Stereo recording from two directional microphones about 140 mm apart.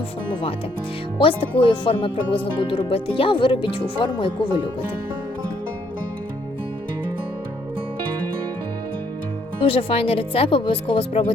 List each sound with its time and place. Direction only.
1.2 s speech: 40° left (ahead or behind)
9.6 s speech: 40° left (ahead or behind)